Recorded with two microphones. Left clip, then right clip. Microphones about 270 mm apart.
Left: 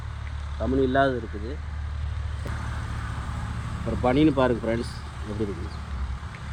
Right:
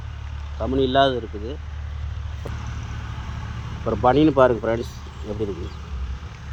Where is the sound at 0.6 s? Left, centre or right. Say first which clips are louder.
Right 4 dB; centre.